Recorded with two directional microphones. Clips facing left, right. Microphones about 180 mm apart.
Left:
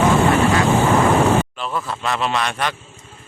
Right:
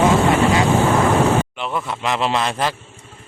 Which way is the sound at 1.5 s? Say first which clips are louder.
Right 1 dB; 20° right (ahead or behind).